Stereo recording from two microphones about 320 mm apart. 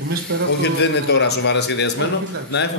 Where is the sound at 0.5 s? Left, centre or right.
Left.